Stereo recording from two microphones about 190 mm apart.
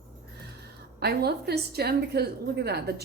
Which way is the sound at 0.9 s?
60° right (ahead or behind).